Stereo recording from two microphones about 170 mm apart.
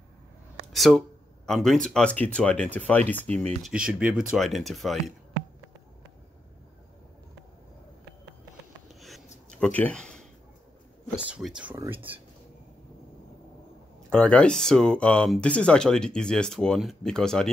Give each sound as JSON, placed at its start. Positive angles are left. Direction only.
{"t": 0.7, "sound": "speech", "side_deg": 0}
{"t": 3.7, "sound": "speech", "side_deg": -5}
{"t": 8.8, "sound": "writing", "side_deg": 0}
{"t": 11.1, "sound": "speech", "side_deg": -5}
{"t": 14.1, "sound": "speech", "side_deg": 5}